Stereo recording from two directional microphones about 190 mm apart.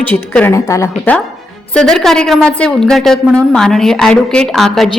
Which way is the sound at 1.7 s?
Centre (ahead or behind).